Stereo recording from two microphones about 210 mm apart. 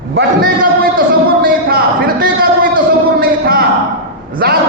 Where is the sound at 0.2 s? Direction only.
50° right (ahead or behind).